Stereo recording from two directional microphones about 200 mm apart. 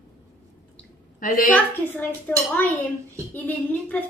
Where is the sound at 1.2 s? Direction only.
45° left (ahead or behind).